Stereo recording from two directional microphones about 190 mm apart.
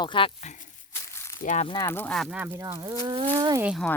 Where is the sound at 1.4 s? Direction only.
40° left (ahead or behind).